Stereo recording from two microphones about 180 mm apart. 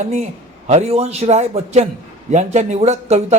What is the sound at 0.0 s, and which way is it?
A man's voice, 40° right (ahead or behind).